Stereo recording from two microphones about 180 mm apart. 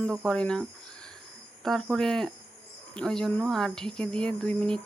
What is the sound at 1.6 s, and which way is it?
Speech, centre (ahead or behind).